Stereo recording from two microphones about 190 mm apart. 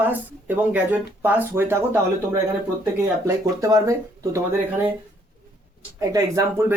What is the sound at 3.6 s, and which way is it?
Speech, 15° right (ahead or behind).